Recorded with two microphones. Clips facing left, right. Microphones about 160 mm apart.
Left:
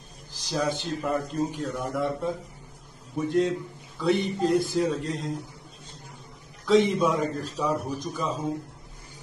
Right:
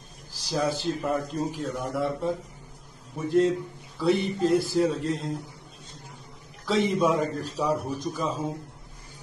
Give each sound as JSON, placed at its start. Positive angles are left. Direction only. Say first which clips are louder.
{"t": 0.5, "sound": "a man's voice", "louder": "right 1 dB", "side_deg": 0}
{"t": 6.6, "sound": "a man's voice", "louder": "left 3 dB", "side_deg": 0}